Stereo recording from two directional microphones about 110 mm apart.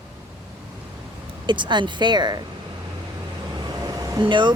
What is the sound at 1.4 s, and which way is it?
Speech, 45° right (ahead or behind).